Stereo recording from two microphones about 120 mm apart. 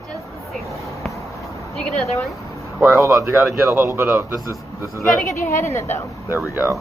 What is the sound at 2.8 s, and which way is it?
A man's voice, 25° right (ahead or behind).